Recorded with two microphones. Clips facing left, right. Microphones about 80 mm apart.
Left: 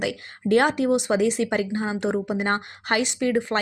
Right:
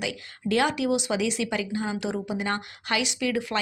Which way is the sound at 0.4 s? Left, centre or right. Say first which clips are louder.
Left 4 dB; left.